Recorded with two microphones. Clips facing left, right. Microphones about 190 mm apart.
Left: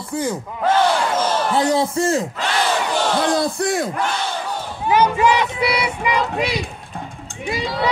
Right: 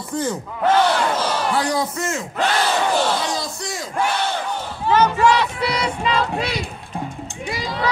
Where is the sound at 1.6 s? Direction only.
25° left (ahead or behind).